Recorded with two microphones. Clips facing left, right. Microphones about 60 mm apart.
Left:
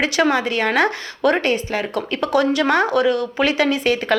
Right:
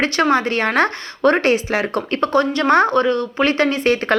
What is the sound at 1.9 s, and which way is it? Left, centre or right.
Speech, right.